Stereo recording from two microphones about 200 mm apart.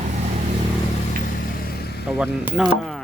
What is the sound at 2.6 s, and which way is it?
Speech, 5° right (ahead or behind).